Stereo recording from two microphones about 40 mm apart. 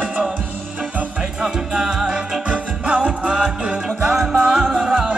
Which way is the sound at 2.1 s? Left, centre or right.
Right.